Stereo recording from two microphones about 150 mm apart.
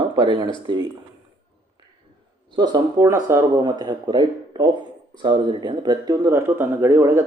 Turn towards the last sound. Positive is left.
turn(degrees=-15)  # may be behind; listen again after turning